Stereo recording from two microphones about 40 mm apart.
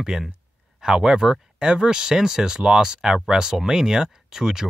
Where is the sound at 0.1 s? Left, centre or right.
Centre.